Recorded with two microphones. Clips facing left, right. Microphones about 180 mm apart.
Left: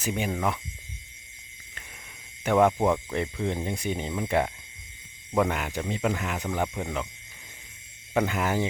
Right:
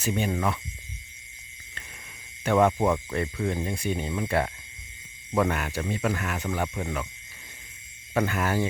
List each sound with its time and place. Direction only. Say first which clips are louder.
0.0 s speech: right 1 dB; 10° left (ahead or behind)
2.4 s speech: even; 10° left (ahead or behind)
8.1 s speech: even; 15° left (ahead or behind)